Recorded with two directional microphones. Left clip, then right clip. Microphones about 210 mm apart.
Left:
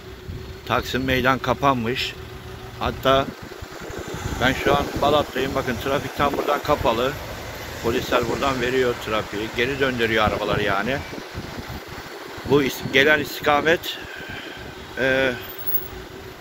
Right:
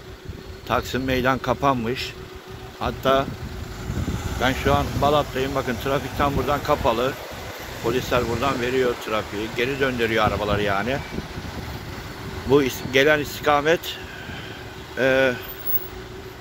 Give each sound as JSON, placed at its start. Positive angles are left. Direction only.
{"t": 0.7, "sound": "speech", "side_deg": -5}
{"t": 4.4, "sound": "speech", "side_deg": -5}
{"t": 12.4, "sound": "speech", "side_deg": -10}
{"t": 15.0, "sound": "speech", "side_deg": -20}